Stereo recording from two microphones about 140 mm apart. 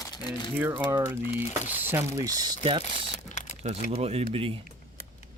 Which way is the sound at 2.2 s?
25° right (ahead or behind).